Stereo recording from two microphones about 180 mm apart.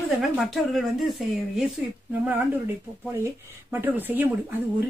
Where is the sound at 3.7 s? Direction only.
10° right (ahead or behind).